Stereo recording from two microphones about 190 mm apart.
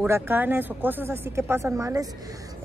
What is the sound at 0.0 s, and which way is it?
Speech, 10° right (ahead or behind).